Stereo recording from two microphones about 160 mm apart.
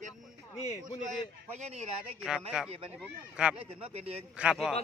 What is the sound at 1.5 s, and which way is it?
Speech, 40° right (ahead or behind).